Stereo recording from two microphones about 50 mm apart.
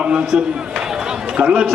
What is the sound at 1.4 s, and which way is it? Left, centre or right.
Speech, right.